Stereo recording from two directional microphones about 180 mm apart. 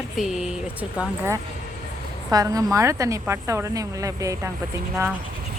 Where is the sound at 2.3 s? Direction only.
20° right (ahead or behind).